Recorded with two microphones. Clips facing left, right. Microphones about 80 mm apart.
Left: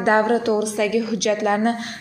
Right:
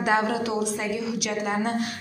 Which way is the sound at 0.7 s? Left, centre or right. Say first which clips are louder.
Left 7 dB; left.